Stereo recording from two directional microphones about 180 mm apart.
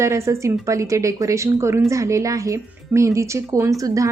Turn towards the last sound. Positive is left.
turn(degrees=-20)  # may be behind; listen again after turning